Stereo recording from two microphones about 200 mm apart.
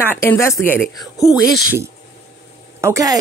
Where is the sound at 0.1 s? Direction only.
10° left (ahead or behind).